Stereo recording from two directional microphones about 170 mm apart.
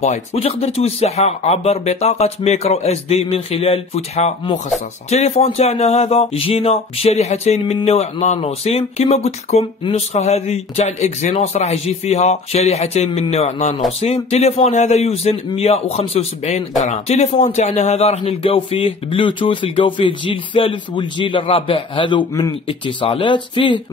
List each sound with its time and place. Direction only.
0.0 s a man's voice: 40° left (ahead or behind)